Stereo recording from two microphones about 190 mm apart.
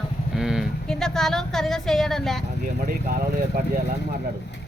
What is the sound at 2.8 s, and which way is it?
Speech, 50° right (ahead or behind).